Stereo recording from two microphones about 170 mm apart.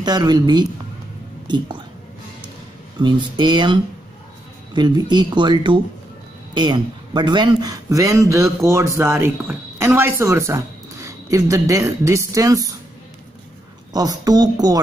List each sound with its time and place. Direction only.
0.0 s a man's voice: 25° right (ahead or behind)
3.0 s a man's voice: 25° right (ahead or behind)
13.9 s a man's voice: 20° right (ahead or behind)